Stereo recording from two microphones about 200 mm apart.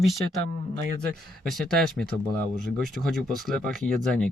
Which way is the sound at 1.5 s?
Centre (ahead or behind).